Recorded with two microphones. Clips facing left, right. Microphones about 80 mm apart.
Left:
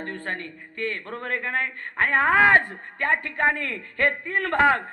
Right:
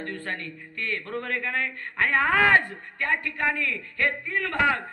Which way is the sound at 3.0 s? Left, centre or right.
Left.